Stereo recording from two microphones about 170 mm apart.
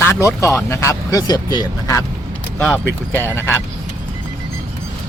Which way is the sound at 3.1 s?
15° left (ahead or behind).